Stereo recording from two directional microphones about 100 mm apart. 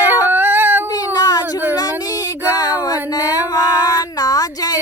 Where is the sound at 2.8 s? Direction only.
40° left (ahead or behind).